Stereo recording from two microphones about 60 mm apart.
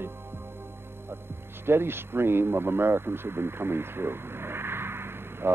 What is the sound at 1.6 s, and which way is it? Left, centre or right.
Speech, right.